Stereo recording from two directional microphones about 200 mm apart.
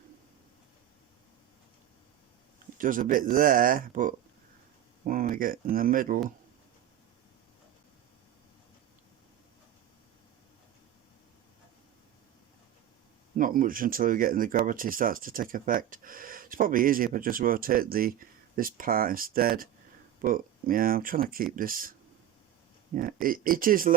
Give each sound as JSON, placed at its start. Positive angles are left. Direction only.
{"t": 2.7, "sound": "speech", "side_deg": -45}
{"t": 13.3, "sound": "speech", "side_deg": -45}
{"t": 23.0, "sound": "speech", "side_deg": -45}